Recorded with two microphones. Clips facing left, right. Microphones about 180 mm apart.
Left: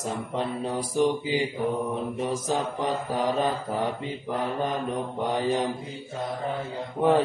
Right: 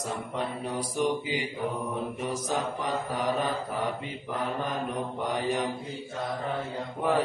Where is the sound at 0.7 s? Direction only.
25° left (ahead or behind).